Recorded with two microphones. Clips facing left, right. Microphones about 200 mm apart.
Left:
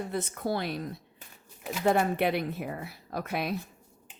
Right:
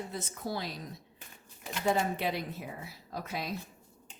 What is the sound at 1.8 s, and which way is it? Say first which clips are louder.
A woman's voice: left 5 dB; 60° left (ahead or behind).